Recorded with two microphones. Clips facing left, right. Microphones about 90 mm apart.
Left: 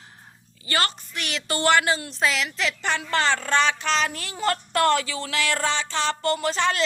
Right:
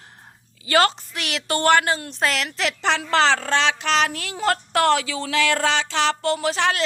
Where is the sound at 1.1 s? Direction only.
80° right.